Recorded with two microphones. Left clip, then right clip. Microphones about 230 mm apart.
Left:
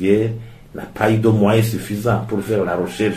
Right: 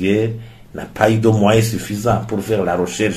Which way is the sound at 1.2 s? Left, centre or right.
Right.